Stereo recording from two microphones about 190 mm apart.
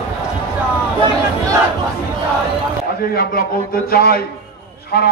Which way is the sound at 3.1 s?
55° left (ahead or behind).